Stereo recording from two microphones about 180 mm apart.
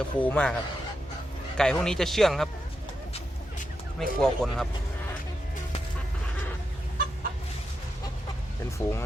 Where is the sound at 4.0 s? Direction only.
5° left (ahead or behind).